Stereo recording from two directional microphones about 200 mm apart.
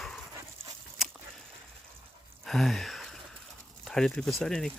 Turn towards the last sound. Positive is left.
turn(degrees=5)  # may be behind; listen again after turning